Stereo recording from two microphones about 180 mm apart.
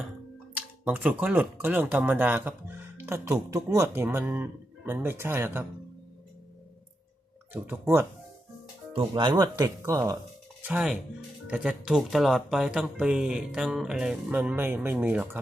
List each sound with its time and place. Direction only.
0.5 s speech: 5° right (ahead or behind)
7.5 s speech: 10° right (ahead or behind)
8.9 s speech: 30° right (ahead or behind)
10.6 s speech: 5° right (ahead or behind)